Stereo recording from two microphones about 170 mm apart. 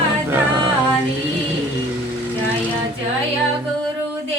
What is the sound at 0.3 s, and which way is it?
Music, 15° right (ahead or behind).